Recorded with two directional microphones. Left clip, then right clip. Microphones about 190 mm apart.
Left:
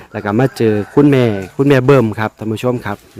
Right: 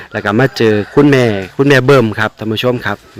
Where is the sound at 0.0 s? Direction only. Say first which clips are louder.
Right 3 dB; centre (ahead or behind).